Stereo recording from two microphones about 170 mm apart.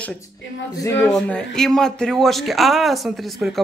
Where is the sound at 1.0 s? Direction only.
5° left (ahead or behind).